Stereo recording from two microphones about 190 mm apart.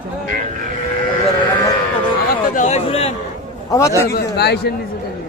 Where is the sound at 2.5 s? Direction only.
40° left (ahead or behind).